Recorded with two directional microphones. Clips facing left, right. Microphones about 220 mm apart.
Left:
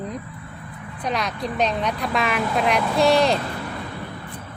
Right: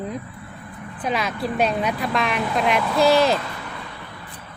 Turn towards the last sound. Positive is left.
turn(degrees=0)  # may be behind; listen again after turning